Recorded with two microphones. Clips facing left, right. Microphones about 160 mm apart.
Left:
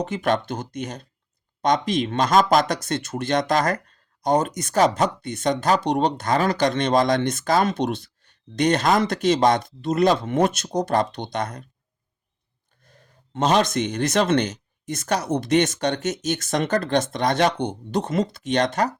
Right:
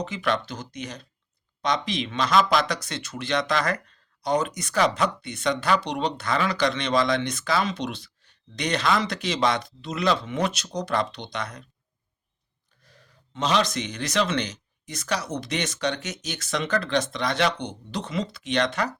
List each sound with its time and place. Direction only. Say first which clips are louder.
0.0 s speech: left 4 dB; 50° left (ahead or behind)
12.8 s speech: left 2 dB; 50° left (ahead or behind)